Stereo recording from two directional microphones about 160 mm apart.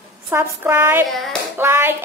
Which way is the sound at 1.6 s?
15° right (ahead or behind).